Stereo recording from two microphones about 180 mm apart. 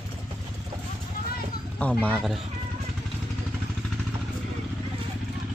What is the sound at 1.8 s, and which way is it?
Speech, 5° left (ahead or behind).